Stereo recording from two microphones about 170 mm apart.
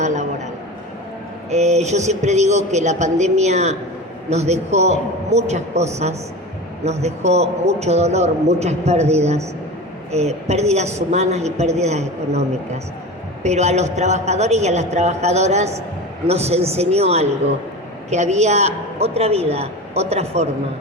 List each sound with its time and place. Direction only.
0.0 s a sound: 45° right (ahead or behind)
1.5 s a man's voice: 40° right (ahead or behind)
13.4 s a man's voice: 40° right (ahead or behind)